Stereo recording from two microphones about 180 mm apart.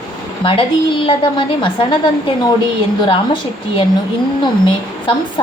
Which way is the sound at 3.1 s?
30° left (ahead or behind).